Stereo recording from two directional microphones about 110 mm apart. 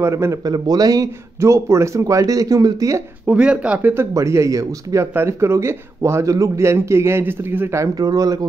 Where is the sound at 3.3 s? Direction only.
10° right (ahead or behind).